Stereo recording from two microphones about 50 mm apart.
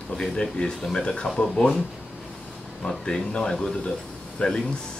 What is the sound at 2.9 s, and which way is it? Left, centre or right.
Speech, centre.